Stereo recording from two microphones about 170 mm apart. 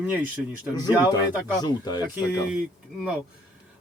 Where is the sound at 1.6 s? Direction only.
25° left (ahead or behind).